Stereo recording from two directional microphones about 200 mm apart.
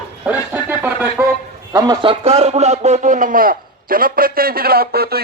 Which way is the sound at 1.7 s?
20° right (ahead or behind).